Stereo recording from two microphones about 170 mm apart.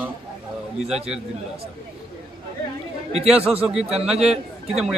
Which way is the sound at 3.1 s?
35° right (ahead or behind).